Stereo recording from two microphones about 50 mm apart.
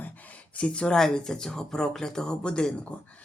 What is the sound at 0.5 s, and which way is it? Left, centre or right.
Speech, left.